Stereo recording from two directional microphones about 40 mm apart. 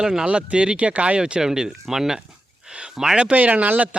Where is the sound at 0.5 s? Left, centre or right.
Right.